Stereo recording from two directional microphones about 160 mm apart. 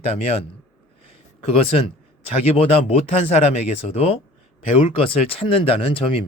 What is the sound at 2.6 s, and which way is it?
Speech, 40° left (ahead or behind).